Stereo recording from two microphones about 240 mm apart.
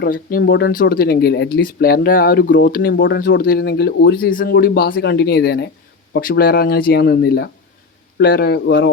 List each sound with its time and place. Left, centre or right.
0.0 s a man's voice: left